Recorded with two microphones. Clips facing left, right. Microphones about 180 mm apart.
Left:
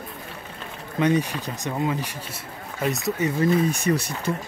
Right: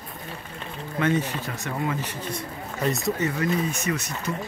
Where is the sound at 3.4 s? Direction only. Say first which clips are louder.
Left 5 dB; 35° left (ahead or behind).